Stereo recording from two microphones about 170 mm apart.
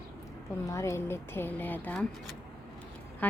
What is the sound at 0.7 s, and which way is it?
Speech, 15° left (ahead or behind).